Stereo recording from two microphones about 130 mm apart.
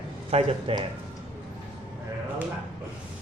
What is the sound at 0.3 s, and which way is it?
Speech, 50° right (ahead or behind).